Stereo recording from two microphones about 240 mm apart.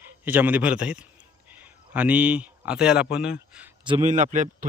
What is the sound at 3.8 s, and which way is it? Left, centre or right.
Speech, right.